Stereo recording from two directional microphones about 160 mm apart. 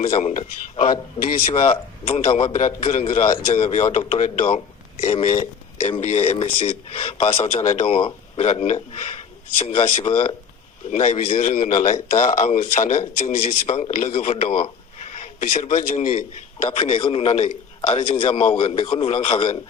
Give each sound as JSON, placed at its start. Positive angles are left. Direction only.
{"t": 0.0, "sound": "a man's voice", "side_deg": 45}
{"t": 1.5, "sound": "a man's voice", "side_deg": 40}
{"t": 16.6, "sound": "speech", "side_deg": 40}